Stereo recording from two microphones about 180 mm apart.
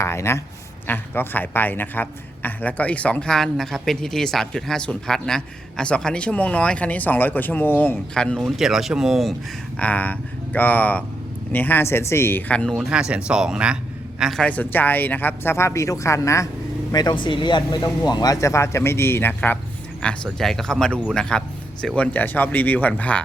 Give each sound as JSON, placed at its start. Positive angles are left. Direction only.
{"t": 0.0, "sound": "a man's voice", "side_deg": 15}